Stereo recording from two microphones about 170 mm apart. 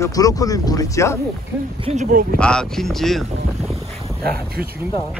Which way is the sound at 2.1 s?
55° right (ahead or behind).